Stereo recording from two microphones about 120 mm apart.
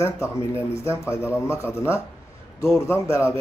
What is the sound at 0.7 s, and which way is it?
Speech, 25° left (ahead or behind).